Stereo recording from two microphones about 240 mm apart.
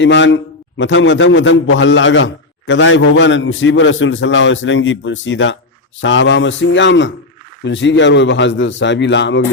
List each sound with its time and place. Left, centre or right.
0.0 s a man's voice: left